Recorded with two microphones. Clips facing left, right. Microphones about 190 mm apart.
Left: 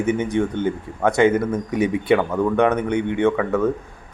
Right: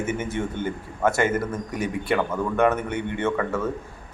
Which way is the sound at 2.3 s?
15° left (ahead or behind).